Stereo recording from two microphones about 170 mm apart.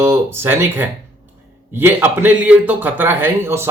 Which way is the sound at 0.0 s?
15° right (ahead or behind).